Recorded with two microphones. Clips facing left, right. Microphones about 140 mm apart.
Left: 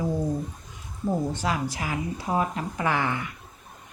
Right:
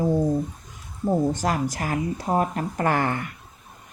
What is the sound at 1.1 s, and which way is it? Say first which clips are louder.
Speech: right 4 dB; 45° right (ahead or behind).